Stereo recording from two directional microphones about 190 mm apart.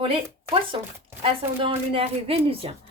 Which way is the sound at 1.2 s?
30° right (ahead or behind).